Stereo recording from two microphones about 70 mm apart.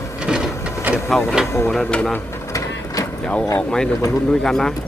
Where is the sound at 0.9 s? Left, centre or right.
Right.